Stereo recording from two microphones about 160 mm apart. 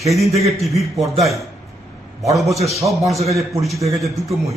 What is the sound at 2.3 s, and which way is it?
A man's voice, centre (ahead or behind).